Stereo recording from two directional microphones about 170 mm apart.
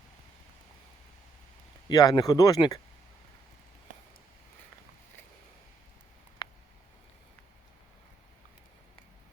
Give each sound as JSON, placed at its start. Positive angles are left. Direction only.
{"t": 1.9, "sound": "speech", "side_deg": 20}